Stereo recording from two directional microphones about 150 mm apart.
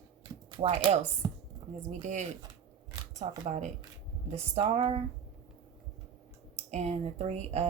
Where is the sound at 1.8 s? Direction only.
55° right (ahead or behind).